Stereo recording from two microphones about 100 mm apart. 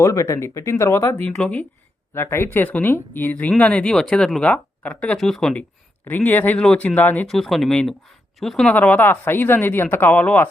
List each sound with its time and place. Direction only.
0.0 s speech: 30° left (ahead or behind)
1.3 s speech: 10° left (ahead or behind)
2.1 s speech: 25° left (ahead or behind); by 5.5 s 5° left (ahead or behind)
6.1 s speech: 20° left (ahead or behind)
7.3 s speech: centre (ahead or behind)
8.7 s speech: 15° left (ahead or behind)